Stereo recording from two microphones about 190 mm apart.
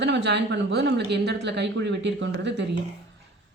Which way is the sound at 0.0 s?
65° right (ahead or behind).